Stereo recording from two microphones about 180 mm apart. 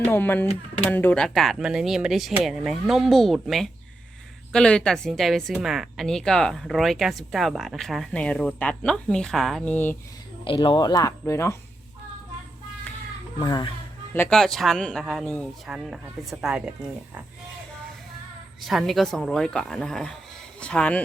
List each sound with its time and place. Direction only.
0.1 s a woman's voice: 10° left (ahead or behind)
10.4 s speech: 30° left (ahead or behind)
13.4 s speech: 25° left (ahead or behind)
14.1 s a woman's voice: 10° left (ahead or behind)
18.6 s a woman's voice: centre (ahead or behind)